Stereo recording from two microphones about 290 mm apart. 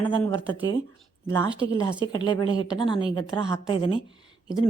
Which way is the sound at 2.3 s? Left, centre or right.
Centre.